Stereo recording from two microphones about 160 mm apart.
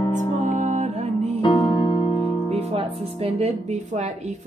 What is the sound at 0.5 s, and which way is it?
Music, 45° right (ahead or behind).